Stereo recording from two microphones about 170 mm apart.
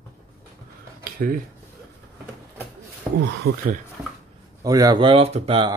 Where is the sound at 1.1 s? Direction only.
55° right (ahead or behind).